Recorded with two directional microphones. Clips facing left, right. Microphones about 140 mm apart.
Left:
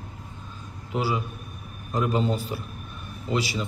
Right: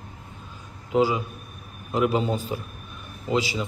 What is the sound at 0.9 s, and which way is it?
A man's voice, 20° right (ahead or behind).